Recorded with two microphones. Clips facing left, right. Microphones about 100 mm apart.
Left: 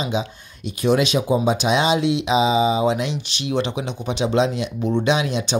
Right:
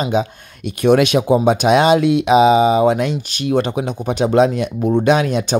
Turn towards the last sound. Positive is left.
turn(degrees=-50)  # may be behind; listen again after turning